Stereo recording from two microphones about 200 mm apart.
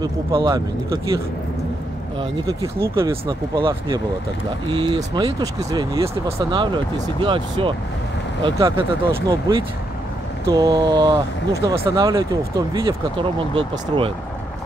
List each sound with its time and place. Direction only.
0.0 s speech: 20° right (ahead or behind)
2.1 s speech: 15° right (ahead or behind)
3.1 s speech: 25° right (ahead or behind)